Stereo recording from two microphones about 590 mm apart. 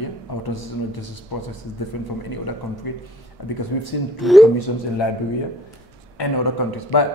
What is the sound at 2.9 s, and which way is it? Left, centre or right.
A man's voice, left.